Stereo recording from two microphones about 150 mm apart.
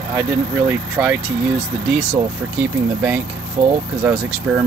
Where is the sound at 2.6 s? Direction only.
10° right (ahead or behind).